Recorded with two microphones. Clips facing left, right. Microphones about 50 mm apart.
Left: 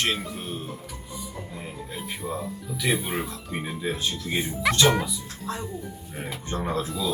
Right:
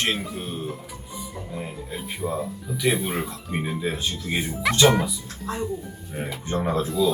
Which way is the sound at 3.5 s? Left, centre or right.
Centre.